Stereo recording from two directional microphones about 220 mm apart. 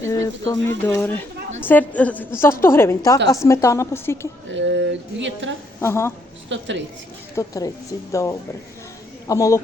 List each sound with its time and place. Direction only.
0.0 s speech: 15° left (ahead or behind)
4.5 s speech: 55° right (ahead or behind)
5.8 s speech: 10° left (ahead or behind)
6.5 s speech: 55° right (ahead or behind)
7.3 s speech: 15° left (ahead or behind)